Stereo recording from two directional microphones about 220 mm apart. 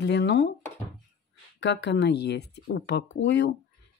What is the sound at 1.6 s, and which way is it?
Speech, 55° left (ahead or behind).